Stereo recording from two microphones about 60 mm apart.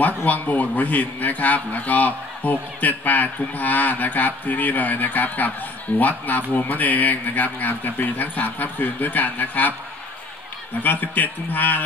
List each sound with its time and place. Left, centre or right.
0.0 s a man's voice: left
10.8 s a man's voice: left